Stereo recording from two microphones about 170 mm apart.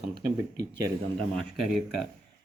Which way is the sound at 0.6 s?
85° right.